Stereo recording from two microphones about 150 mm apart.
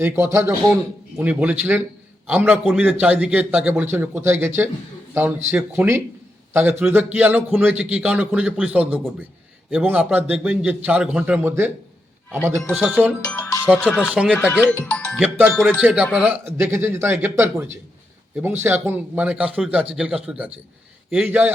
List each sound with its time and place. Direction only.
0.0 s a man's voice: 15° right (ahead or behind)
13.2 s music: 10° left (ahead or behind)
14.1 s a man's voice: 5° right (ahead or behind)
14.5 s speech: 10° left (ahead or behind)
15.2 s a man's voice: 10° right (ahead or behind)